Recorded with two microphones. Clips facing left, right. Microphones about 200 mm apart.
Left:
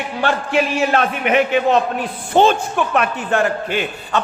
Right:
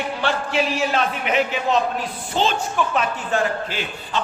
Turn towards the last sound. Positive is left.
turn(degrees=60)  # may be behind; listen again after turning